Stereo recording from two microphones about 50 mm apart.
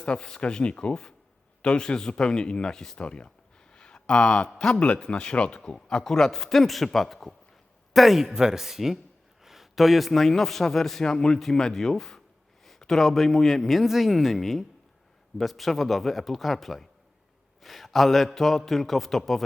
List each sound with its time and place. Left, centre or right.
0.0 s a man's voice: left; by 19.5 s centre